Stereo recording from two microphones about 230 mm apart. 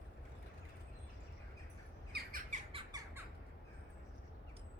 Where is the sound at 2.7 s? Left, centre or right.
Right.